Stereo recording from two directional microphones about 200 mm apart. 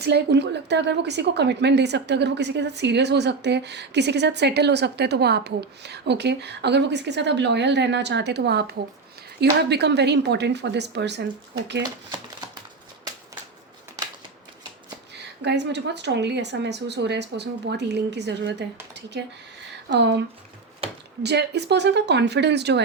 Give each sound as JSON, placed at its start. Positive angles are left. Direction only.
{"t": 0.0, "sound": "a woman's voice", "side_deg": -55}
{"t": 15.4, "sound": "a woman's voice", "side_deg": -60}
{"t": 19.9, "sound": "a woman's voice", "side_deg": -60}
{"t": 20.8, "sound": "a sound", "side_deg": -30}
{"t": 21.2, "sound": "a woman's voice", "side_deg": -55}